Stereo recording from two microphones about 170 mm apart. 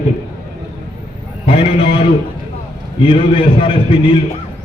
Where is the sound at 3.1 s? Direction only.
30° left (ahead or behind).